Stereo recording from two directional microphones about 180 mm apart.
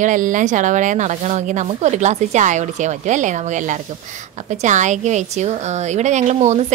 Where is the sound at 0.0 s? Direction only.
45° right (ahead or behind).